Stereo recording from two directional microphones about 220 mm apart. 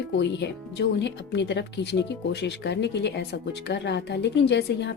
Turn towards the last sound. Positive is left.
turn(degrees=50)  # may be behind; listen again after turning